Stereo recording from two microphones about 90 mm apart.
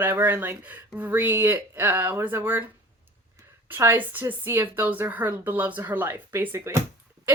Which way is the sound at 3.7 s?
25° right (ahead or behind).